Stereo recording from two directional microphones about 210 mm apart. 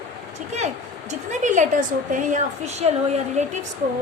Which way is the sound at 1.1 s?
35° right (ahead or behind).